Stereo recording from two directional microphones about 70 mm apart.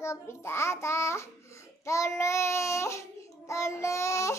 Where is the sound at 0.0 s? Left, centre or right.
Left.